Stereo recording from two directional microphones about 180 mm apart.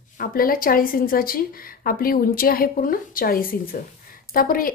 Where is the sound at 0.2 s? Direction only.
55° left (ahead or behind).